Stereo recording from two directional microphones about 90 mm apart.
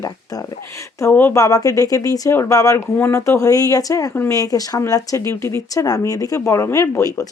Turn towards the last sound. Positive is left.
turn(degrees=35)  # may be behind; listen again after turning